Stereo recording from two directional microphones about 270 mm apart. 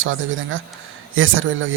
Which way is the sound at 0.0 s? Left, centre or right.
Right.